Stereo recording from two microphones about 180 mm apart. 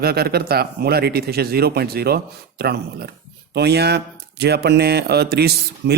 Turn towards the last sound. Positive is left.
turn(degrees=-60)  # may be behind; listen again after turning